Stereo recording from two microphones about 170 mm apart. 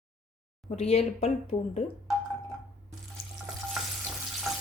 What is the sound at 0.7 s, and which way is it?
A woman's voice, 40° left (ahead or behind).